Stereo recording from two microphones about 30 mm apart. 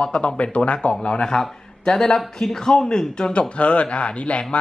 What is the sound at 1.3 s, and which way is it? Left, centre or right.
A man's voice, left.